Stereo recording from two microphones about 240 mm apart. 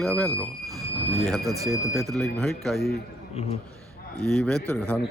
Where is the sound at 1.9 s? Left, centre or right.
Centre.